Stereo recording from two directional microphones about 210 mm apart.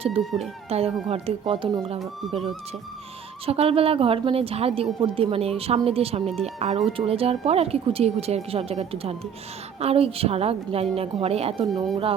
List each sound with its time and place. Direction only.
0.2 s speech: centre (ahead or behind)
0.7 s a woman's voice: 30° right (ahead or behind)
3.4 s a woman's voice: 30° right (ahead or behind)
11.6 s speech: centre (ahead or behind)